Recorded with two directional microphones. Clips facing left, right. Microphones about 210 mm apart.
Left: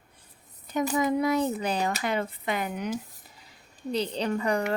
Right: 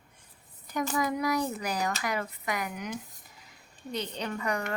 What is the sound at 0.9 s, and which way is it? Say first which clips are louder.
Speech: left 4 dB; 25° left (ahead or behind).